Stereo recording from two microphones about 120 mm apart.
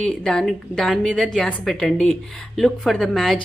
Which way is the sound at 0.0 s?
5° left (ahead or behind).